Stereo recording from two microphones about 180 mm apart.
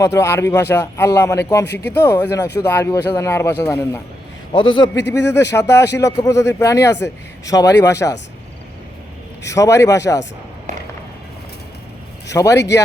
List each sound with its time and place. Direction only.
0.0 s speech: 15° left (ahead or behind)
1.6 s speech: 65° left (ahead or behind)
1.9 s speech: 10° left (ahead or behind)
4.5 s a man's voice: 25° left (ahead or behind)
4.9 s speech: 75° left (ahead or behind)
5.3 s speech: 15° left (ahead or behind)
9.4 s speech: 15° left (ahead or behind)
12.3 s speech: 20° left (ahead or behind)